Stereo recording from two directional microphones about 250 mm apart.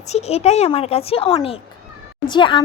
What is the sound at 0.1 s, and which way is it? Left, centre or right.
A woman's voice, left.